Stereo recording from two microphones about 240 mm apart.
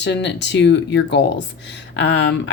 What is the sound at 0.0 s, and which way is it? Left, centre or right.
A woman's voice, left.